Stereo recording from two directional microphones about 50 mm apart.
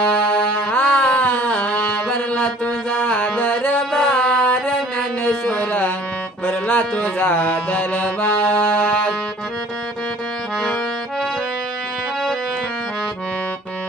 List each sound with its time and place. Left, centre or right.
0.0 s music: left
4.2 s music: centre
6.5 s music: left